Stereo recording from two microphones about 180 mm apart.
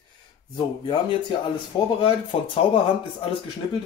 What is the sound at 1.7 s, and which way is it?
Speech, 20° left (ahead or behind).